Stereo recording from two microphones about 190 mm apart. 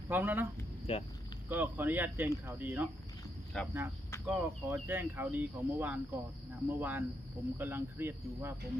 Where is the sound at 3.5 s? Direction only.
5° left (ahead or behind).